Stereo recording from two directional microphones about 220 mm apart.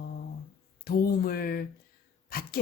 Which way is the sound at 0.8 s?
45° left (ahead or behind).